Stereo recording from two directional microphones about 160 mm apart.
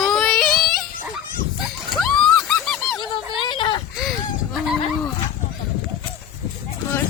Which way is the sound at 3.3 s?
35° left (ahead or behind).